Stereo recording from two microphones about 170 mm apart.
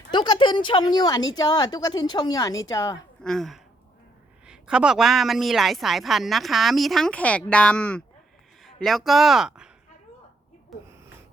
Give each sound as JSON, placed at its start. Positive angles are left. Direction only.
{"t": 0.1, "sound": "a woman's voice", "side_deg": 25}
{"t": 3.2, "sound": "a woman's voice", "side_deg": 0}